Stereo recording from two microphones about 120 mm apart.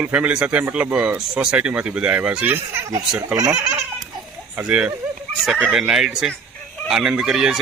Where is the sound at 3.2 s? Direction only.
30° right (ahead or behind).